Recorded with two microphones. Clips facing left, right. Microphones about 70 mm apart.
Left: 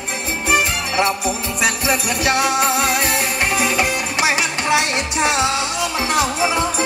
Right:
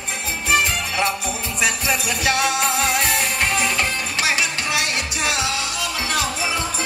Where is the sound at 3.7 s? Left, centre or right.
Left.